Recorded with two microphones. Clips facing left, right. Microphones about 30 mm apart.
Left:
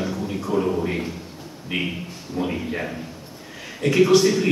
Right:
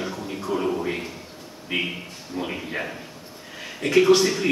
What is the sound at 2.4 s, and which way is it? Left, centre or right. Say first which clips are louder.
Speech: left 4 dB; centre.